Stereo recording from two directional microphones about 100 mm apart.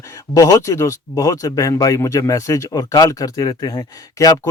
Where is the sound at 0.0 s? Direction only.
35° left (ahead or behind).